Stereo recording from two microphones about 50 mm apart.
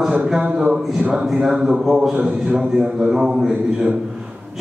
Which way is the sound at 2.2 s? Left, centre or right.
Centre.